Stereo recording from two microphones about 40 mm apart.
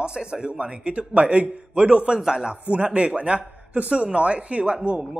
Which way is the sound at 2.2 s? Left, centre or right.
Centre.